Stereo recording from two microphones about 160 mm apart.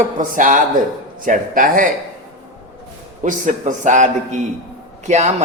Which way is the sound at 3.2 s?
50° right (ahead or behind).